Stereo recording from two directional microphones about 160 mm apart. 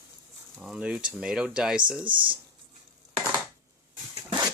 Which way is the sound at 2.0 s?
30° right (ahead or behind).